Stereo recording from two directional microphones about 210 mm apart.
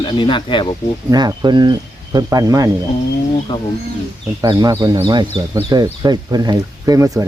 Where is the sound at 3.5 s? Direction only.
20° left (ahead or behind).